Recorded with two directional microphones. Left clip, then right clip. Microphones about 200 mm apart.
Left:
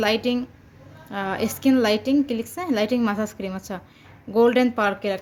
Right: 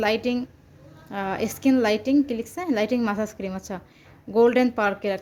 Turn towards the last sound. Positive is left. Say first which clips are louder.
# left 1 dB
turn(degrees=-5)  # may be behind; listen again after turning